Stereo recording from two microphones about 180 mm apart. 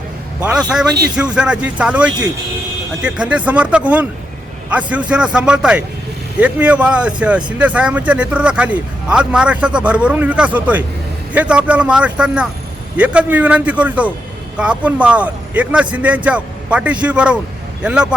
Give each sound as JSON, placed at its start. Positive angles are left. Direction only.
{"t": 0.4, "sound": "a man's voice", "side_deg": -5}